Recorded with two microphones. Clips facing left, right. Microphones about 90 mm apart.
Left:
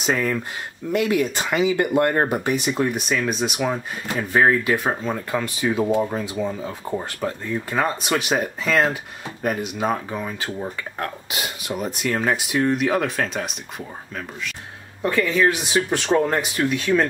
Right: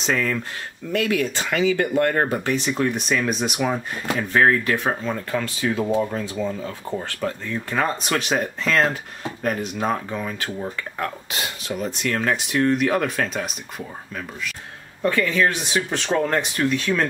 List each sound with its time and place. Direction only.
0.0 s speech: 15° left (ahead or behind)
4.3 s speech: 10° left (ahead or behind)
7.7 s speech: 5° left (ahead or behind)
11.8 s speech: 10° left (ahead or behind)